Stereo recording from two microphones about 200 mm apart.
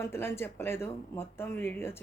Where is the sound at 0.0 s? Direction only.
10° left (ahead or behind).